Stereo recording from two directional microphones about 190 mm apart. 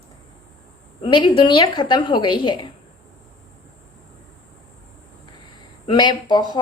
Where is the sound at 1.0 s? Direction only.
25° left (ahead or behind).